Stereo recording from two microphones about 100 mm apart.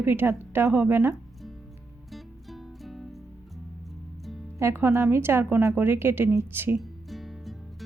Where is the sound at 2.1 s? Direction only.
Centre (ahead or behind).